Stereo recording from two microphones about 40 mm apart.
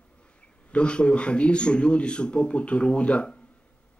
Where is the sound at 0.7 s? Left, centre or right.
Left.